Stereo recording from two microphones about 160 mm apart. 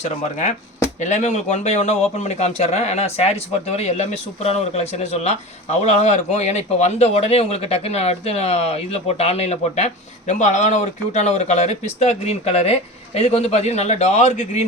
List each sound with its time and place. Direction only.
0.0 s speech: 50° left (ahead or behind)